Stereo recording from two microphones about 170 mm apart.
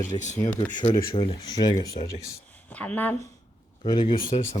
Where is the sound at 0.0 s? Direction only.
45° left (ahead or behind).